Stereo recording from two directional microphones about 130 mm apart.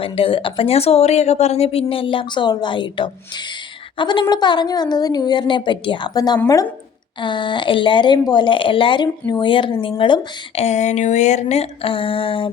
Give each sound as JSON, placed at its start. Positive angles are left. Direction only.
{"t": 0.0, "sound": "speech", "side_deg": 45}